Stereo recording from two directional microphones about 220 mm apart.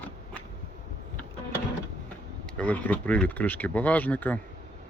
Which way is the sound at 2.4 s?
5° left (ahead or behind).